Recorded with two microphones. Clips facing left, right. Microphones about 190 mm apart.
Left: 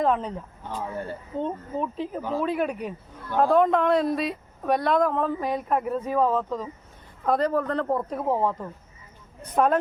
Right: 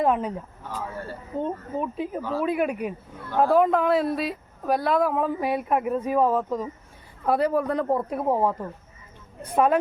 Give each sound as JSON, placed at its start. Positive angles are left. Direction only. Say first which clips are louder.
{"t": 0.0, "sound": "speech", "louder": "right 1 dB", "side_deg": -10}
{"t": 0.8, "sound": "speech", "louder": "left 2 dB", "side_deg": 20}
{"t": 1.4, "sound": "a woman's voice", "louder": "right 1 dB", "side_deg": -10}